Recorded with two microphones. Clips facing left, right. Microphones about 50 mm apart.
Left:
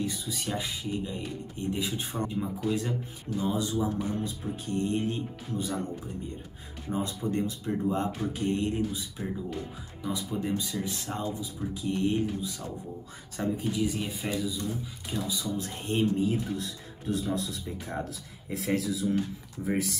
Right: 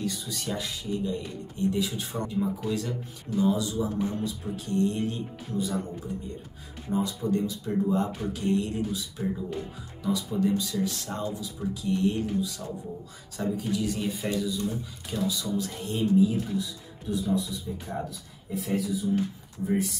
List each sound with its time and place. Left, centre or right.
0.0 s speech: centre; by 5.8 s left
6.9 s speech: left
10.0 s speech: centre
15.2 s speech: left
16.3 s speech: left
18.5 s speech: left